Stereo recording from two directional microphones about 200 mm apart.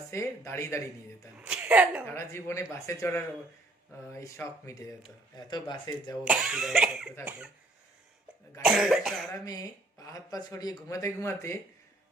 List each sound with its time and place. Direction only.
0.1 s speech: 15° left (ahead or behind)
1.4 s a woman's voice: 5° right (ahead or behind)
2.0 s speech: 15° left (ahead or behind)
4.7 s speech: 15° left (ahead or behind)
6.2 s speech: 5° right (ahead or behind)
8.6 s speech: centre (ahead or behind)
9.4 s speech: 15° left (ahead or behind)